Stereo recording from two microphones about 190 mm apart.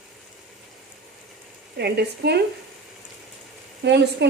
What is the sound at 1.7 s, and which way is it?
Speech, 60° right (ahead or behind).